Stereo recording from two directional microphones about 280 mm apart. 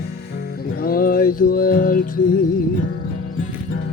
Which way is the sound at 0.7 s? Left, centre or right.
Left.